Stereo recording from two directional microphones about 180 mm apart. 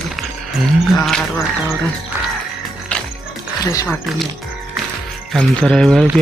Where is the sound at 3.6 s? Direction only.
20° left (ahead or behind).